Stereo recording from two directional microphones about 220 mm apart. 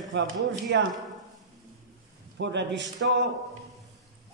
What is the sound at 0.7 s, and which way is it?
Speech, 55° right (ahead or behind).